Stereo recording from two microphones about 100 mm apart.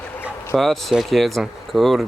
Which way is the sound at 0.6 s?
Centre (ahead or behind).